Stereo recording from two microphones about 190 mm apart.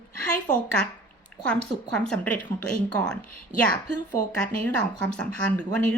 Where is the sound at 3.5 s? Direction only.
10° right (ahead or behind).